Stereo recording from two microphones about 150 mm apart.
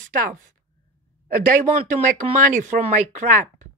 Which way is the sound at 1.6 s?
55° right (ahead or behind).